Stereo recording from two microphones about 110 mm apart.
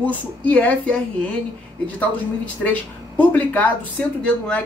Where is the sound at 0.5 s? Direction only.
10° left (ahead or behind).